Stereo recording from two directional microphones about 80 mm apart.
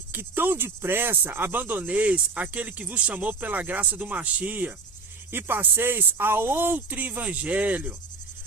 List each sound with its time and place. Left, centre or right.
0.1 s speech: right